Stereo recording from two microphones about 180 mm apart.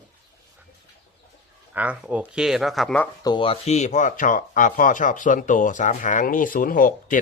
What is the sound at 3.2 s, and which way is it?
Speech, 30° left (ahead or behind).